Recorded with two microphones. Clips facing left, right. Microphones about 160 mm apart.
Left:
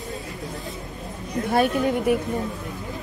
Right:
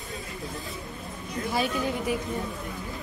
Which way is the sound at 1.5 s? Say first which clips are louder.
Left 8 dB; 60° left (ahead or behind).